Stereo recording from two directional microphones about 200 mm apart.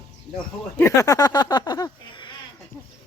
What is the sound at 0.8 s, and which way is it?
Speech, 15° left (ahead or behind).